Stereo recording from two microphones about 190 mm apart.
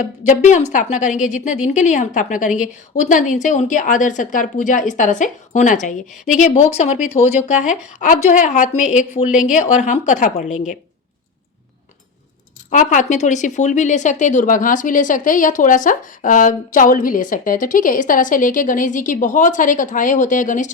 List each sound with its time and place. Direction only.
0.0 s a woman's voice: 40° left (ahead or behind)
12.7 s speech: 40° left (ahead or behind)